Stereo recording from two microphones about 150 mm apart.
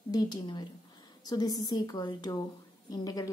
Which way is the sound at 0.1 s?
25° left (ahead or behind).